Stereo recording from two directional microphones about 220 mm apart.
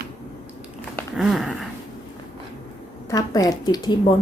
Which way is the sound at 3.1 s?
15° left (ahead or behind).